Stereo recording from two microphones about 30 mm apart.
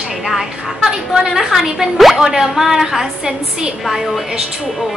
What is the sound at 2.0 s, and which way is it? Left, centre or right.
Speech, centre.